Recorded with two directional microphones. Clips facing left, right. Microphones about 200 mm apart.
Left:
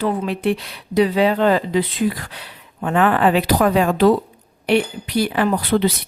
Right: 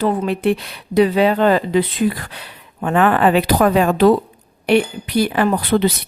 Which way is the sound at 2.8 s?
55° right (ahead or behind).